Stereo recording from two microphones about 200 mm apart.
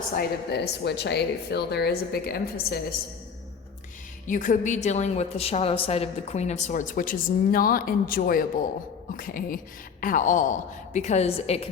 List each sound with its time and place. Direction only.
0.2 s a woman's voice: 55° left (ahead or behind)
4.3 s a woman's voice: 40° left (ahead or behind)